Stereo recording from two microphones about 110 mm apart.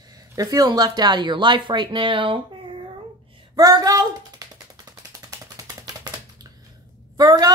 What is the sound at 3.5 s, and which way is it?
Speech, 35° right (ahead or behind).